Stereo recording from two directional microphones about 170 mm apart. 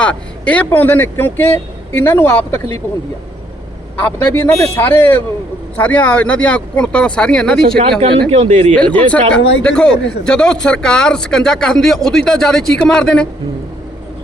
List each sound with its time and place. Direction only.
0.0 s speech: 5° left (ahead or behind)
4.0 s speech: 15° left (ahead or behind)
7.8 s speech: 30° right (ahead or behind)
8.7 s speech: 5° left (ahead or behind)